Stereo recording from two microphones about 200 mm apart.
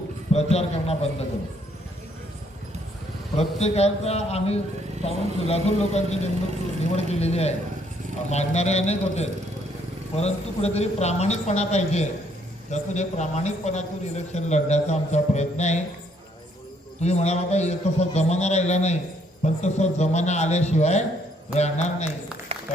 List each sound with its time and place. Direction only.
0.3 s a man's voice: 30° left (ahead or behind)
3.3 s a man's voice: 30° left (ahead or behind)
17.0 s a man's voice: 35° left (ahead or behind)
22.5 s a sound: 30° right (ahead or behind)